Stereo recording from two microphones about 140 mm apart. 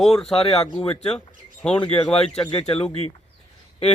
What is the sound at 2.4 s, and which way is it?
Speech, 40° left (ahead or behind).